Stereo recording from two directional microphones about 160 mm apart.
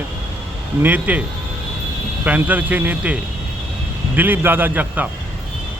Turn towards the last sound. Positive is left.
turn(degrees=-10)  # may be behind; listen again after turning